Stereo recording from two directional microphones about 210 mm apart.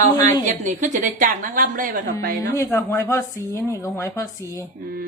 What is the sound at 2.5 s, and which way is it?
Speech, 10° left (ahead or behind).